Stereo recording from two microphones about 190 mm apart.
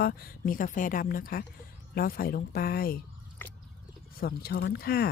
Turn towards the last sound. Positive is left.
turn(degrees=55)  # may be behind; listen again after turning